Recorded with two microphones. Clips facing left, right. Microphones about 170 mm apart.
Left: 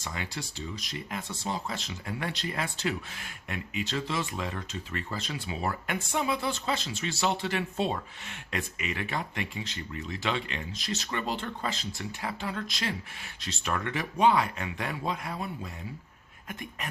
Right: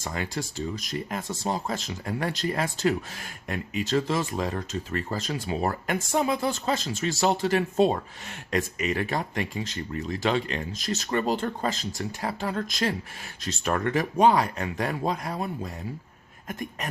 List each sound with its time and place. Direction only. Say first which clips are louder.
0.0 s speech: right 6 dB; 45° right (ahead or behind)